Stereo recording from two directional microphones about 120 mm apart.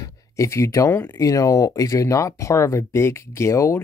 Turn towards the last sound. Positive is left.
turn(degrees=25)  # may be behind; listen again after turning